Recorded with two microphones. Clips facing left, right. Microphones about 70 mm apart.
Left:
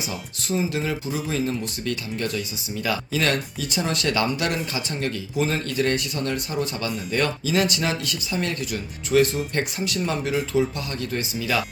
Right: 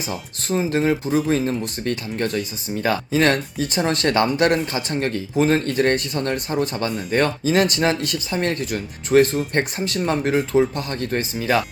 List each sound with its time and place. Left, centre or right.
0.1 s speech: right